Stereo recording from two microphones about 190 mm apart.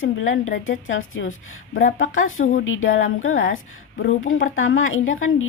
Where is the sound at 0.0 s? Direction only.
90° left.